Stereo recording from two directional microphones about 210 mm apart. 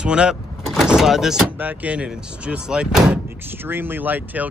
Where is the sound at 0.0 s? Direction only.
5° right (ahead or behind).